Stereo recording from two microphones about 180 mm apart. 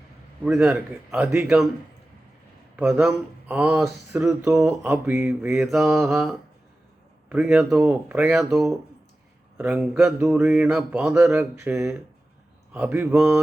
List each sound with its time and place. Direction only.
0.4 s speech: 5° right (ahead or behind)
2.7 s speech: 5° right (ahead or behind)
4.2 s speech: 15° right (ahead or behind)
4.6 s speech: 5° right (ahead or behind)
4.9 s speech: 15° right (ahead or behind)
5.5 s speech: centre (ahead or behind)
9.6 s speech: 10° right (ahead or behind)
11.2 s speech: 15° right (ahead or behind)